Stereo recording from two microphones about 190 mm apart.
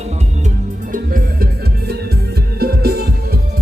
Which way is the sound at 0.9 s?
45° right (ahead or behind).